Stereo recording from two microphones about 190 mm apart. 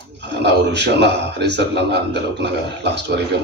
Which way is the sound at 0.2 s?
65° right (ahead or behind).